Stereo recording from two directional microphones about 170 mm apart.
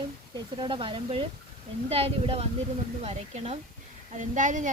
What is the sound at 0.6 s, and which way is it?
Speech, 30° right (ahead or behind).